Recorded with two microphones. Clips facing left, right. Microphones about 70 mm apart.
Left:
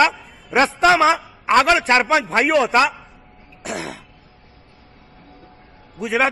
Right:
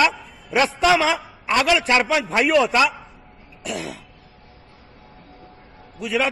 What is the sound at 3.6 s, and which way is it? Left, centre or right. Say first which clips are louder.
Throat clearing: left 1 dB; left.